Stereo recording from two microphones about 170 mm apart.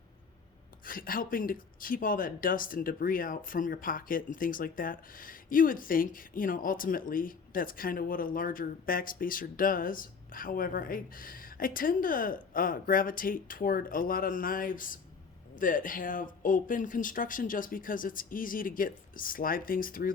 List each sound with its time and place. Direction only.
0.9 s speech: 55° left (ahead or behind)